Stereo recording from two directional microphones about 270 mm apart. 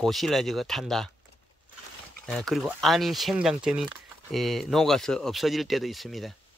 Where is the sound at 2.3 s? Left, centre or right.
Centre.